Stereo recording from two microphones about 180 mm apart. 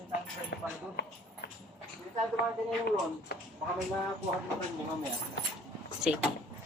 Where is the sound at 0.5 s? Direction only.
80° left.